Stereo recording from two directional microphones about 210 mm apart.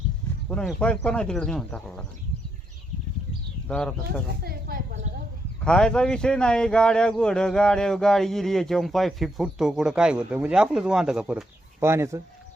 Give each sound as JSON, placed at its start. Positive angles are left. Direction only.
{"t": 0.5, "sound": "speech", "side_deg": 5}
{"t": 3.7, "sound": "speech", "side_deg": 5}
{"t": 4.4, "sound": "a sound", "side_deg": -45}
{"t": 5.5, "sound": "speech", "side_deg": 5}